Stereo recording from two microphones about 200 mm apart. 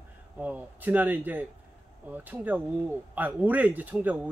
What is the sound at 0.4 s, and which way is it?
A man's voice, 5° right (ahead or behind).